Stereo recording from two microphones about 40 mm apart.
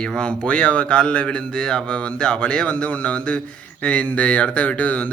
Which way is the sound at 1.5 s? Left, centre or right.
Centre.